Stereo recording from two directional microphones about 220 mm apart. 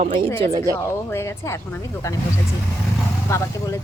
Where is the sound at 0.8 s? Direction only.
10° left (ahead or behind).